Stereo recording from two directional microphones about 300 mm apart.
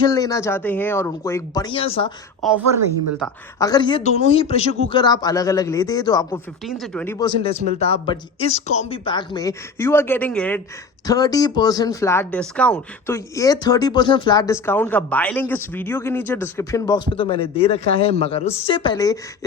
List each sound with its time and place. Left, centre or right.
0.0 s speech: centre
2.4 s a woman's voice: centre
3.6 s speech: centre
6.7 s speech: centre